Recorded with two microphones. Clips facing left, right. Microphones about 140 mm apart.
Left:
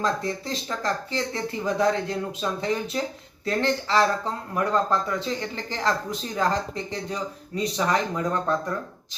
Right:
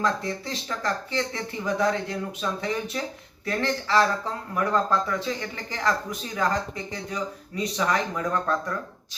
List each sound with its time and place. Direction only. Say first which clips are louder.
0.8 s speech: right 1 dB; 25° left (ahead or behind)